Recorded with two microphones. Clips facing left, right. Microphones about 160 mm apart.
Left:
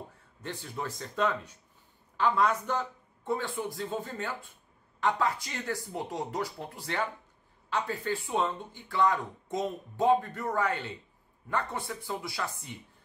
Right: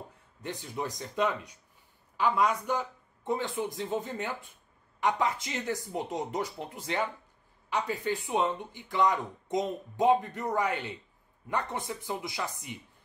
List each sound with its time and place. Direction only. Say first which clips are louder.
0.4 s speech: right 2 dB; 15° right (ahead or behind)